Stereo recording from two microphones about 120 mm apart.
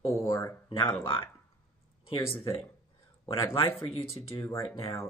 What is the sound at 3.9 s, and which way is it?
Speech, 55° left (ahead or behind).